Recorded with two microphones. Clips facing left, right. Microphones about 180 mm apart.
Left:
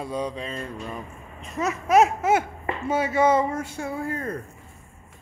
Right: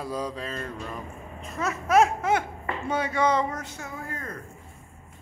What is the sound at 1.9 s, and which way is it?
Speech, 5° left (ahead or behind).